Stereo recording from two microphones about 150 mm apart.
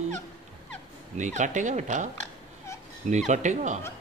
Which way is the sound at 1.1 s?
55° right (ahead or behind).